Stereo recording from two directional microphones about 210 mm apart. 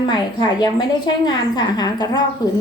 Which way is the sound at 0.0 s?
20° left (ahead or behind).